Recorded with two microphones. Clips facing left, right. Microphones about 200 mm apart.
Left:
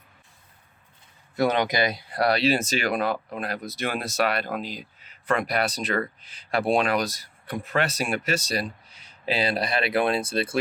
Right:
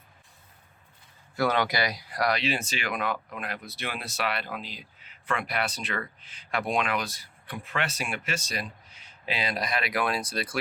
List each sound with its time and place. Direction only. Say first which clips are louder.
1.4 s speech: left 3 dB; 20° left (ahead or behind)